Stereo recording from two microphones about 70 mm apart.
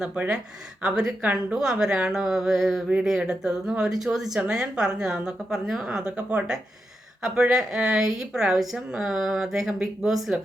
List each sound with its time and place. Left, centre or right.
0.0 s speech: centre
6.1 s speech: centre